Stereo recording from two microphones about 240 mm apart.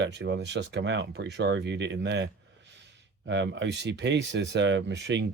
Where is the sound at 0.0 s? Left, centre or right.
Right.